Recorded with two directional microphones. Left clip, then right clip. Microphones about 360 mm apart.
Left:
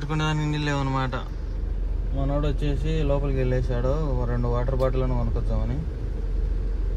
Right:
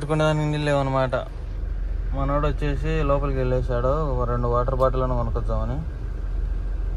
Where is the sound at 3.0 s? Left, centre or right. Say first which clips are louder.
Right 3 dB; centre.